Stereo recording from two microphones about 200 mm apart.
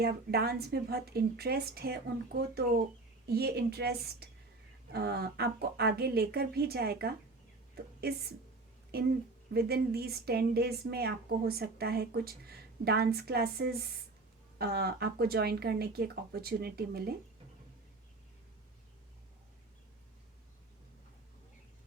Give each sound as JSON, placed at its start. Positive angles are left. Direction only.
{"t": 0.0, "sound": "speech", "side_deg": -50}
{"t": 8.9, "sound": "speech", "side_deg": -50}